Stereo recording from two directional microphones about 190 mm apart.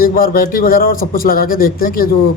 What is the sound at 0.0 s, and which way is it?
A man's voice, 50° left (ahead or behind).